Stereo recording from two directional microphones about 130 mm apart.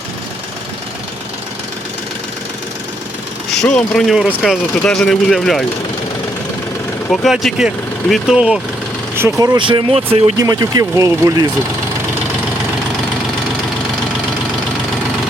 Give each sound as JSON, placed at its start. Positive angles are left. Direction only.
{"t": 3.5, "sound": "speech", "side_deg": 5}
{"t": 7.1, "sound": "speech", "side_deg": 0}
{"t": 9.6, "sound": "speech", "side_deg": -40}
{"t": 10.3, "sound": "speech", "side_deg": -30}